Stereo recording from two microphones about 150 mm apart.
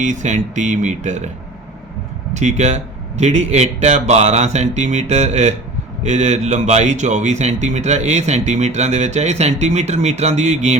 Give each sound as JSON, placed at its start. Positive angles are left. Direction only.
{"t": 0.0, "sound": "speech", "side_deg": -55}
{"t": 2.3, "sound": "speech", "side_deg": -50}